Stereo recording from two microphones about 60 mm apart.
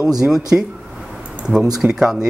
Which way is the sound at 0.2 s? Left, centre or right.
Centre.